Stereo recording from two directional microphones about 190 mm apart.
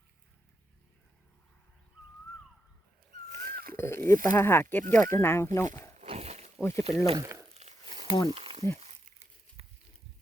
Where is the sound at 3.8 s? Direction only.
15° left (ahead or behind).